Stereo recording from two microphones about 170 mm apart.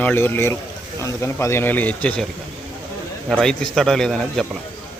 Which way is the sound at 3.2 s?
5° left (ahead or behind).